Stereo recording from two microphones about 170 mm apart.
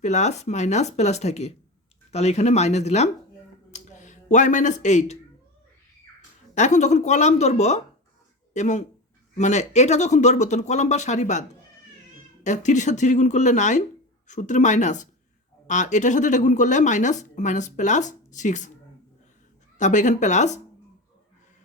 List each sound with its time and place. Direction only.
0.0 s speech: 40° left (ahead or behind)
3.7 s finger snapping: 45° left (ahead or behind)
6.5 s speech: 45° left (ahead or behind)
19.8 s speech: 45° left (ahead or behind)